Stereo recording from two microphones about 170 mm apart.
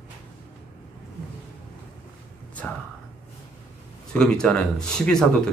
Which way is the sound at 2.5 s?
10° left (ahead or behind).